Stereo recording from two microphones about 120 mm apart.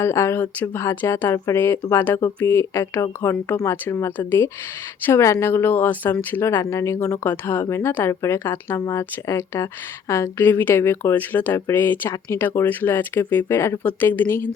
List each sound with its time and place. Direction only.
0.0 s speech: 20° left (ahead or behind)